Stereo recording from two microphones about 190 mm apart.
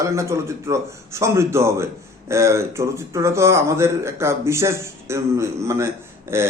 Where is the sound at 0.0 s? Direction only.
15° right (ahead or behind).